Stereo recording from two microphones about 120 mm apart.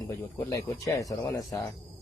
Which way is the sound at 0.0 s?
30° left (ahead or behind).